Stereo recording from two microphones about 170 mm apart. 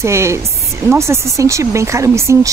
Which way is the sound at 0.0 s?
15° right (ahead or behind).